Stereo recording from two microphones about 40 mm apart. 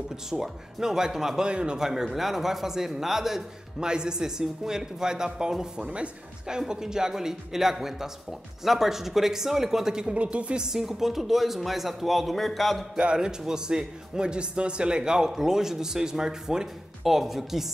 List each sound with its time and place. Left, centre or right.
0.3 s a man's voice: centre
1.5 s speech: right
1.8 s a man's voice: centre
5.8 s speech: right
6.7 s a man's voice: centre
10.1 s a woman's voice: right
10.6 s speech: centre
12.9 s a man's voice: right
17.0 s speech: centre